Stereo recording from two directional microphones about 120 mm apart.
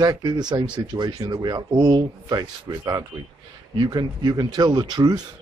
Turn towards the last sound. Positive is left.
turn(degrees=-35)  # may be behind; listen again after turning